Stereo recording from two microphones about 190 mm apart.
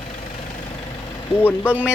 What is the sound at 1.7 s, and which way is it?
Speech, 10° right (ahead or behind).